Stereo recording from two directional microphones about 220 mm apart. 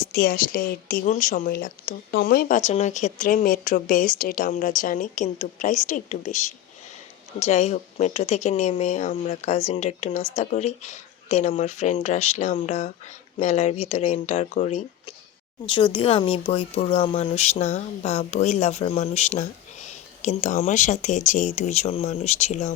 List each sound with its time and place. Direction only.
0.1 s speech: 45° left (ahead or behind)